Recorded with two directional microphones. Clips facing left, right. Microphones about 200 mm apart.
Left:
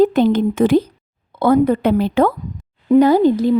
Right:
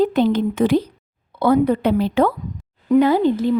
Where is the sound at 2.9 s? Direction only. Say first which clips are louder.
Left 3 dB; 40° left (ahead or behind).